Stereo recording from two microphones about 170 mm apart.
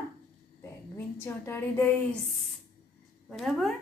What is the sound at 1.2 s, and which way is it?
Speech, 15° left (ahead or behind).